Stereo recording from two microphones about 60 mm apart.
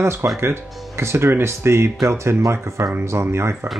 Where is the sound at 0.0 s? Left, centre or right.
Right.